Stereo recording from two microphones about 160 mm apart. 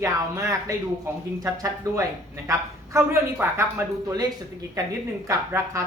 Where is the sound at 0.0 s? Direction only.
20° right (ahead or behind).